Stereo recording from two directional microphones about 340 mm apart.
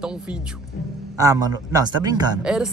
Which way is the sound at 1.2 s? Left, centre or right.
Centre.